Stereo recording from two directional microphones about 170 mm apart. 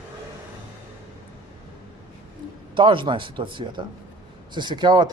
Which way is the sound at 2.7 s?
30° right (ahead or behind).